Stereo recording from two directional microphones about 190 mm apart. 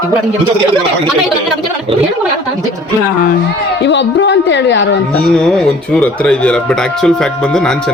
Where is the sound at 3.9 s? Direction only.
70° left (ahead or behind).